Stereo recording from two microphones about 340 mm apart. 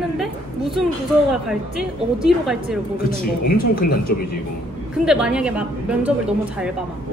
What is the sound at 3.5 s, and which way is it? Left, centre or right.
Speech, left.